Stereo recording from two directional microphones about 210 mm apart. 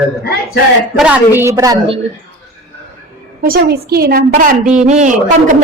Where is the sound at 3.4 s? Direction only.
45° right (ahead or behind).